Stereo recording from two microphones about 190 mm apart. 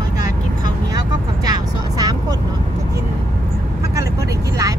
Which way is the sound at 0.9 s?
20° right (ahead or behind).